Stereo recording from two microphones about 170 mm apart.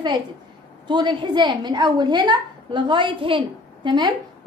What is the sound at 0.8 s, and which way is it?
A woman's voice, 25° right (ahead or behind).